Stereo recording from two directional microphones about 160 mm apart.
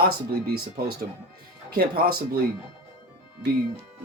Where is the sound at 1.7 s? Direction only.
75° right (ahead or behind).